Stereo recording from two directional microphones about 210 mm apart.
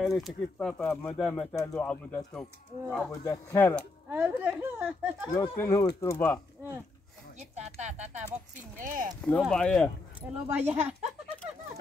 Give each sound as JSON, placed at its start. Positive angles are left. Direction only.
{"t": 0.0, "sound": "speech", "side_deg": 0}
{"t": 3.3, "sound": "speech", "side_deg": 15}
{"t": 4.1, "sound": "speech", "side_deg": -10}
{"t": 5.3, "sound": "speech", "side_deg": 15}
{"t": 7.3, "sound": "speech", "side_deg": -35}
{"t": 9.2, "sound": "speech", "side_deg": 5}
{"t": 10.5, "sound": "speech", "side_deg": -10}